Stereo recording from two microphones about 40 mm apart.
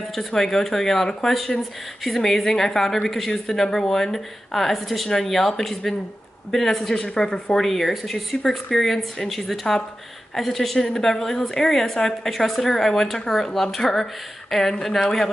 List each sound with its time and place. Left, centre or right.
0.3 s a woman's voice: centre
7.5 s a woman's voice: centre